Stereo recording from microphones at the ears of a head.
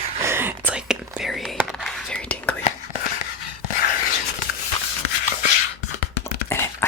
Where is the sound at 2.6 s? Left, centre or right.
Left.